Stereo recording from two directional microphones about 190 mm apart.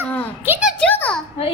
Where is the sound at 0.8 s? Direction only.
5° left (ahead or behind).